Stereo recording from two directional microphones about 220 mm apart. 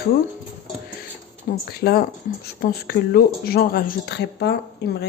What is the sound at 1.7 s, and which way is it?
A woman's voice, 45° left (ahead or behind).